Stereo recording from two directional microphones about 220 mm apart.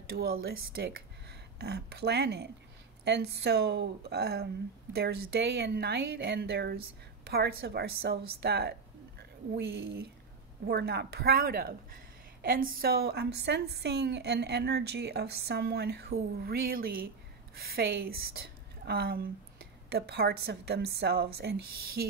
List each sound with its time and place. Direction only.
0.1 s a woman's voice: 45° right (ahead or behind)